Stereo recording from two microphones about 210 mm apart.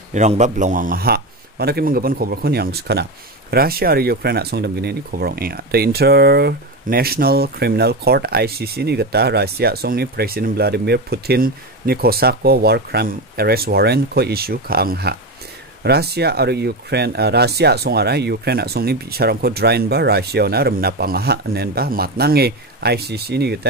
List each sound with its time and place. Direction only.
0.1 s a man's voice: 35° right (ahead or behind); by 23.7 s 50° right (ahead or behind)